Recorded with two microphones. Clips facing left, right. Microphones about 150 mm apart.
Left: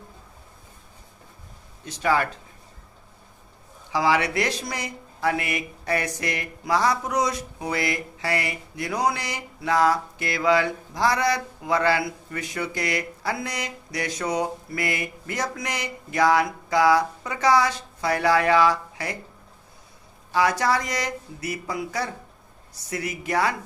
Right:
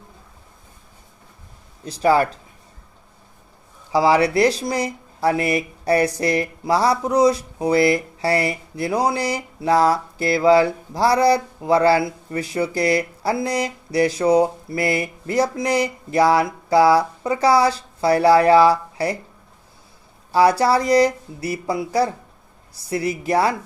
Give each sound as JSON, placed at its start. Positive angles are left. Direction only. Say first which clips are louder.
{"t": 1.8, "sound": "speech", "louder": "right 6 dB", "side_deg": -35}
{"t": 3.9, "sound": "speech", "louder": "right 6 dB", "side_deg": -35}
{"t": 20.3, "sound": "speech", "louder": "right 6 dB", "side_deg": -35}